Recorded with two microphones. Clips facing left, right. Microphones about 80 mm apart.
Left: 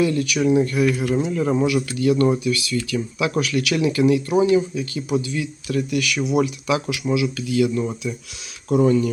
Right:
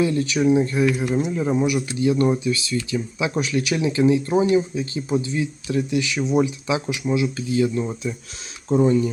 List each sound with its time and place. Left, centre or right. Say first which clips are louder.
0.0 s speech: even; right